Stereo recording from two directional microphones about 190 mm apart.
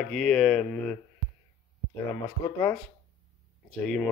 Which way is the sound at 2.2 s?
15° left (ahead or behind).